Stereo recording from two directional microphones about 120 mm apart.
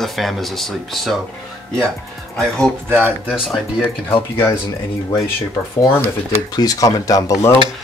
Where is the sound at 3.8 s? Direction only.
15° left (ahead or behind).